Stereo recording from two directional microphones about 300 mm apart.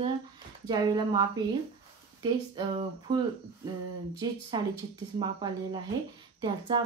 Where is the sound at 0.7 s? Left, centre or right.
Centre.